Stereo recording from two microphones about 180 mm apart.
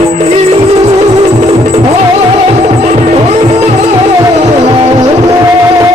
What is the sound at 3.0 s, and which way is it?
Music, 35° right (ahead or behind).